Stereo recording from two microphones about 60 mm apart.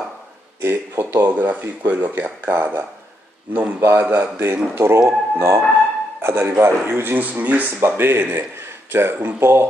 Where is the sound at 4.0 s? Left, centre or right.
Right.